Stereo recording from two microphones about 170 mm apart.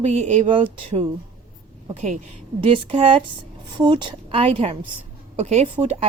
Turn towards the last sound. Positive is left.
turn(degrees=-35)  # may be behind; listen again after turning